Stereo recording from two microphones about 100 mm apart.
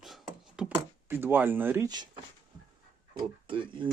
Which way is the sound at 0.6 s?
20° right (ahead or behind).